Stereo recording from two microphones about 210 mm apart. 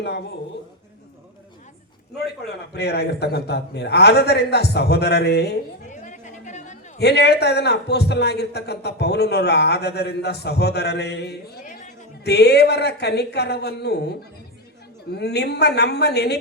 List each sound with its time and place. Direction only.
2.7 s a man's voice: 50° left (ahead or behind)
5.9 s chatter: 35° left (ahead or behind)
7.0 s a man's voice: 50° left (ahead or behind)